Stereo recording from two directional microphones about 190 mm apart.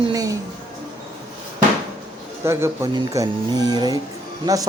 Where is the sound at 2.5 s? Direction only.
15° right (ahead or behind).